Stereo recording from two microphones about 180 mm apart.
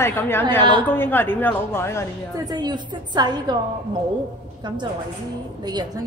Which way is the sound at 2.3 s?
20° right (ahead or behind).